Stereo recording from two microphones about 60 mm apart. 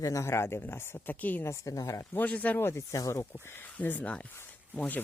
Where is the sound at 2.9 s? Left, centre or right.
Left.